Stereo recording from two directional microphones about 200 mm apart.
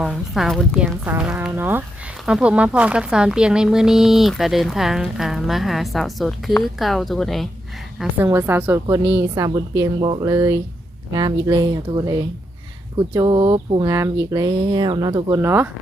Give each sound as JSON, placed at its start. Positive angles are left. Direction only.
{"t": 0.0, "sound": "a woman's voice", "side_deg": 0}
{"t": 9.3, "sound": "a woman's voice", "side_deg": -20}
{"t": 13.1, "sound": "speech", "side_deg": -25}